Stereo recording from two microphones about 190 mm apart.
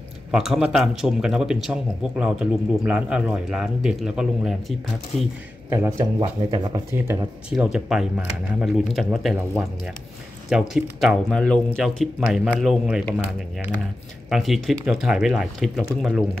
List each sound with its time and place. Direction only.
0.3 s speech: 5° right (ahead or behind)
5.7 s speech: 15° right (ahead or behind)
7.5 s speech: centre (ahead or behind)
10.5 s speech: centre (ahead or behind)
14.3 s speech: centre (ahead or behind)